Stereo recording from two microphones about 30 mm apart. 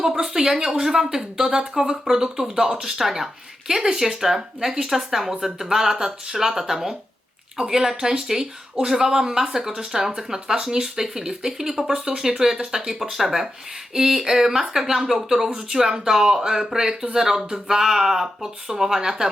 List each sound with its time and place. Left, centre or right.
0.0 s speech: centre